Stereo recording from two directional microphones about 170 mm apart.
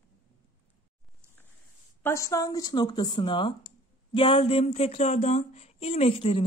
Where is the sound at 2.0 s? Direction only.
15° left (ahead or behind).